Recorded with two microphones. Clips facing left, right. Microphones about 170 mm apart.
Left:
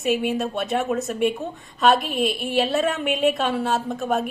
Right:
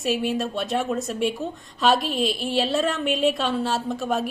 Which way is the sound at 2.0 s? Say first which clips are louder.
Left 1 dB; 55° left (ahead or behind).